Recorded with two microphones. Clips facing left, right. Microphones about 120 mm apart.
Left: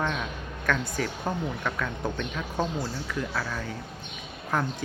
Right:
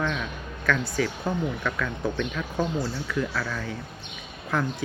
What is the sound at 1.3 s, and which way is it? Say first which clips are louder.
Speech: right 2 dB; 40° left (ahead or behind).